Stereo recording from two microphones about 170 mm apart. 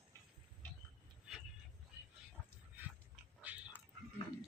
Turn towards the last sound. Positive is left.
turn(degrees=-10)  # may be behind; listen again after turning